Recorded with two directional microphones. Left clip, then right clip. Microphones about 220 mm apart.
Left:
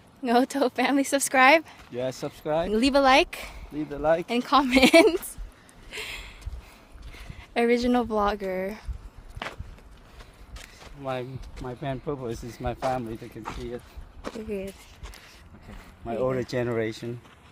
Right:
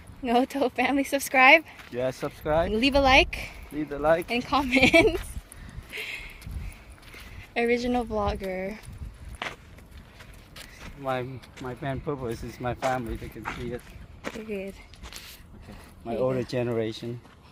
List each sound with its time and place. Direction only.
0.2 s speech: 15° left (ahead or behind)
1.8 s speech: 5° right (ahead or behind)
2.7 s speech: 15° left (ahead or behind)
3.8 s speech: 10° right (ahead or behind)
4.3 s speech: 25° left (ahead or behind)
5.9 s a sound: 20° left (ahead or behind)
7.5 s speech: 20° left (ahead or behind)
9.4 s walk: 10° left (ahead or behind)
11.0 s speech: 5° right (ahead or behind)
16.0 s speech: 10° right (ahead or behind)